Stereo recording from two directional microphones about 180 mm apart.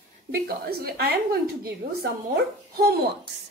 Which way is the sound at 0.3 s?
60° right (ahead or behind).